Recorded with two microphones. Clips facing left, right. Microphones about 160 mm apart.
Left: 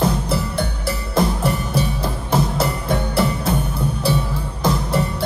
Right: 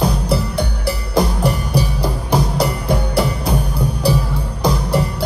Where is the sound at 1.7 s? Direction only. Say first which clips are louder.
Right 2 dB; 25° left (ahead or behind).